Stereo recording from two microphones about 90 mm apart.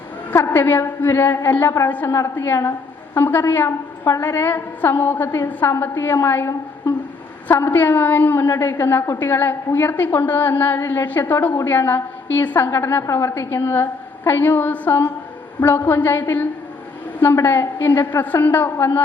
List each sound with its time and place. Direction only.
0.4 s a woman's voice: 20° left (ahead or behind)